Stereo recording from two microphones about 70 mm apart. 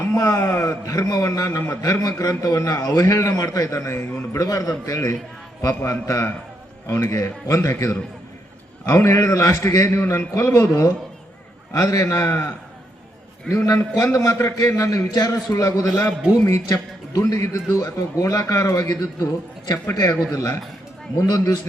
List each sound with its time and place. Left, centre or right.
0.0 s speech: left
1.7 s a man's voice: left
6.8 s speech: left
10.0 s a man's voice: left
10.3 s speech: left
11.7 s a man's voice: left
13.7 s a man's voice: left
16.7 s a man's voice: left